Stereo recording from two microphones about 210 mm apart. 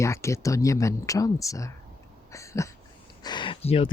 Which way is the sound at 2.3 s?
15° left (ahead or behind).